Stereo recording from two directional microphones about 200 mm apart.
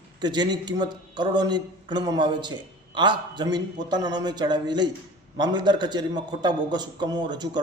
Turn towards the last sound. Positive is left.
turn(degrees=-20)  # may be behind; listen again after turning